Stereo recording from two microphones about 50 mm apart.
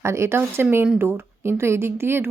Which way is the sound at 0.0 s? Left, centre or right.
Right.